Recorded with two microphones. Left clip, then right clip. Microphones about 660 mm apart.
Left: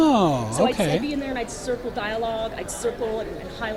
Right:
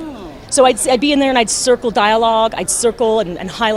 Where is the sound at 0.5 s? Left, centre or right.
Right.